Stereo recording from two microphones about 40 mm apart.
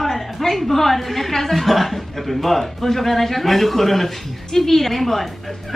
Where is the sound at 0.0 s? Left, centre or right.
Centre.